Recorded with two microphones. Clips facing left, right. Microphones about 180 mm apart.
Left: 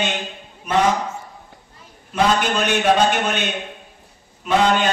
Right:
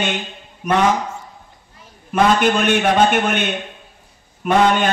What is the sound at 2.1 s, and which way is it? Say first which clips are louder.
A man's voice: right 3 dB; 50° right (ahead or behind).